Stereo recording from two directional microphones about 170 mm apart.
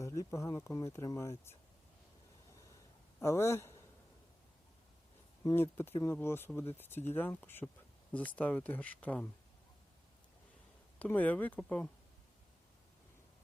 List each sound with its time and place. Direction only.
0.0 s speech: 20° left (ahead or behind)
3.2 s a man's voice: 15° left (ahead or behind)
5.4 s speech: 15° left (ahead or behind)
11.0 s speech: 10° left (ahead or behind)